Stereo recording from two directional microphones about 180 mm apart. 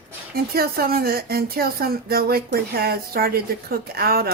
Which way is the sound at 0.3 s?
60° right (ahead or behind).